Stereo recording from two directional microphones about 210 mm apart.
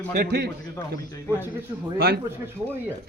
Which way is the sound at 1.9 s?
50° right (ahead or behind).